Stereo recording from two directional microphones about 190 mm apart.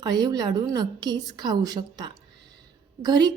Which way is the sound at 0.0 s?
20° right (ahead or behind).